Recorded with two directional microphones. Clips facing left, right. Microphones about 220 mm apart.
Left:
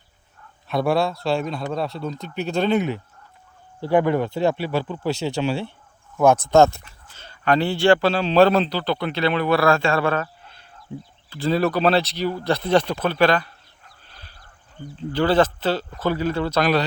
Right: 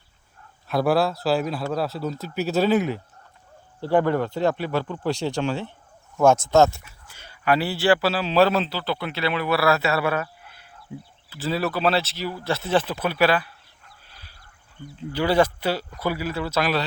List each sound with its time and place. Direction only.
0.7 s speech: centre (ahead or behind)
3.8 s speech: 15° left (ahead or behind)
4.3 s speech: 25° left (ahead or behind)
4.7 s speech: 5° left (ahead or behind)
6.5 s speech: 5° right (ahead or behind)
14.9 s speech: 10° right (ahead or behind)